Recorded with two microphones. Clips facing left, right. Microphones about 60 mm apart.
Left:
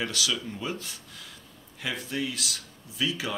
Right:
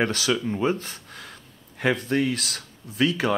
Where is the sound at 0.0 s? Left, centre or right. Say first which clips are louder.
Right 7 dB; right.